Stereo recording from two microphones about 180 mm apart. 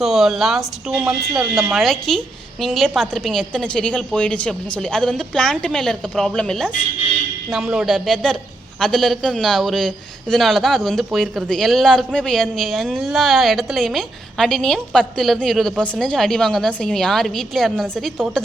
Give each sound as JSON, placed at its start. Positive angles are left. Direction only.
{"t": 0.0, "sound": "a man's voice", "side_deg": 0}